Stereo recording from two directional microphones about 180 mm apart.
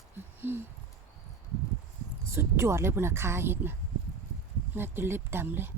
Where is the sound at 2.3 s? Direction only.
15° right (ahead or behind).